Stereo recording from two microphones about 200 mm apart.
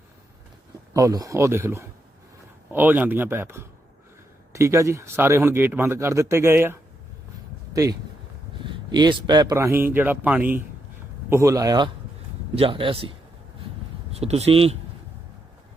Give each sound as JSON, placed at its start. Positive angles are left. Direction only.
{"t": 0.9, "sound": "speech", "side_deg": -15}